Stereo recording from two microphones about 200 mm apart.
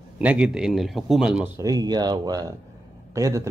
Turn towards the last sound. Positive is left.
turn(degrees=-15)  # may be behind; listen again after turning